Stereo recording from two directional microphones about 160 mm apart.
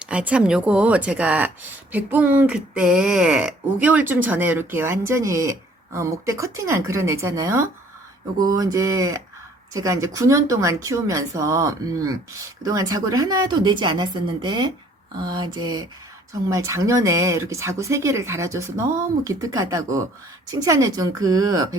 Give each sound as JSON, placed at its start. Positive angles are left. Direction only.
{"t": 0.0, "sound": "speech", "side_deg": -5}